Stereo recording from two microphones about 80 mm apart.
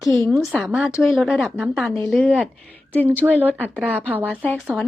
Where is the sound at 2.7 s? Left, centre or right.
Left.